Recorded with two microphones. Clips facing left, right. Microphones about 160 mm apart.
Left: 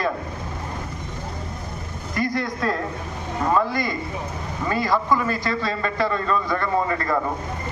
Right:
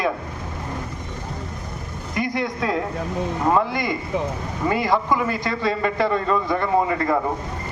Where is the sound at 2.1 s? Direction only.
20° right (ahead or behind).